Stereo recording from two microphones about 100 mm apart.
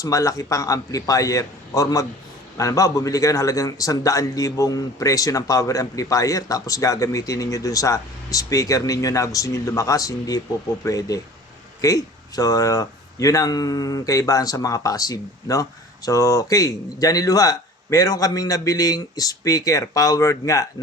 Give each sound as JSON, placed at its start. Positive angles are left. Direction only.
{"t": 0.0, "sound": "a man's voice", "side_deg": 35}